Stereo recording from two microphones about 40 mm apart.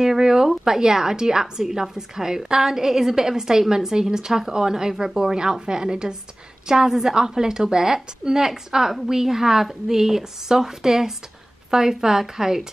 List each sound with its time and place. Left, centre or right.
0.0 s a woman's voice: centre